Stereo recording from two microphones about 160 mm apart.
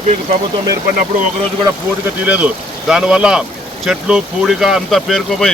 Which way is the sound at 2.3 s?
5° right (ahead or behind).